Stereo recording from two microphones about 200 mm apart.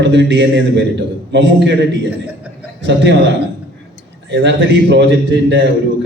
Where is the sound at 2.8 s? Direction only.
60° right (ahead or behind).